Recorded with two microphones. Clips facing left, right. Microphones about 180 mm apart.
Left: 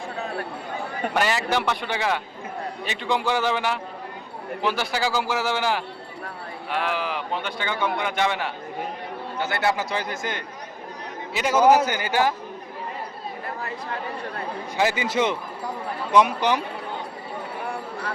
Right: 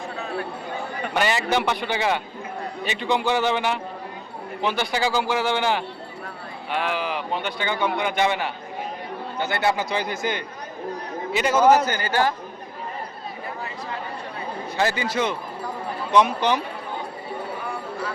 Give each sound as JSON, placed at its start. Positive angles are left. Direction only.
{"t": 1.1, "sound": "a man's voice", "side_deg": 0}
{"t": 14.8, "sound": "a man's voice", "side_deg": 15}
{"t": 16.1, "sound": "a man's voice", "side_deg": 10}